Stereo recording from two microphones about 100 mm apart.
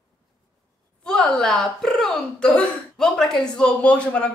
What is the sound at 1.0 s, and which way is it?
A man's voice, 5° left (ahead or behind).